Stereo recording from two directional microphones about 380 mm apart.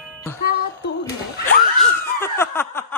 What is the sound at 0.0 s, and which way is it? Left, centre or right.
Music, centre.